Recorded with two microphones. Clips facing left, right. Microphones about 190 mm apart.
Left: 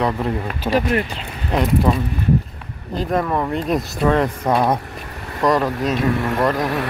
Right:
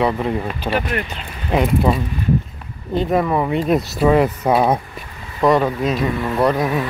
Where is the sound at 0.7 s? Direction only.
35° left (ahead or behind).